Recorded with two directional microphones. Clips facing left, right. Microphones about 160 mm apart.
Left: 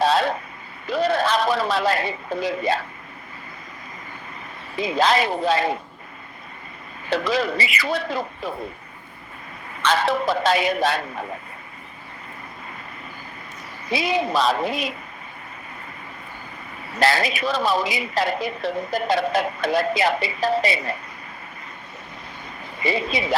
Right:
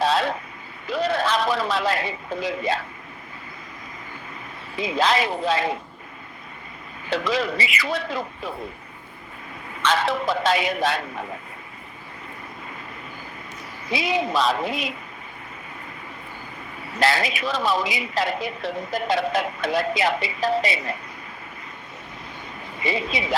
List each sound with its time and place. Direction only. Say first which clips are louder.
0.0 s vehicle: left 2 dB; 35° left (ahead or behind)
0.9 s a man's voice: left 2 dB; 35° left (ahead or behind)
4.8 s a woman's voice: left 2 dB; 35° left (ahead or behind)
7.1 s a woman's voice: left 2 dB; 40° left (ahead or behind)
9.8 s a woman's voice: left 2 dB; 35° left (ahead or behind)
13.9 s a woman's voice: left 1 dB; 35° left (ahead or behind)
17.0 s a woman's voice: left 2 dB; 40° left (ahead or behind)
22.8 s a woman's voice: left 2 dB; 40° left (ahead or behind)